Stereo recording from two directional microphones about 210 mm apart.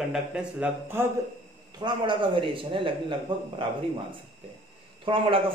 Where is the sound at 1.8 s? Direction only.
20° right (ahead or behind).